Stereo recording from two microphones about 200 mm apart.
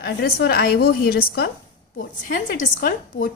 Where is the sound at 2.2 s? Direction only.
40° left (ahead or behind).